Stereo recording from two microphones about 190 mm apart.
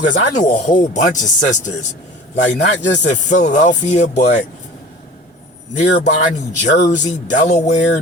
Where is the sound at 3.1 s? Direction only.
40° left (ahead or behind).